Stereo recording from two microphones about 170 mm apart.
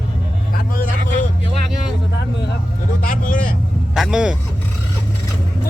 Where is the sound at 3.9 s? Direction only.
Centre (ahead or behind).